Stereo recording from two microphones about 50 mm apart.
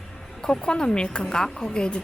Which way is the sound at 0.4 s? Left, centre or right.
Centre.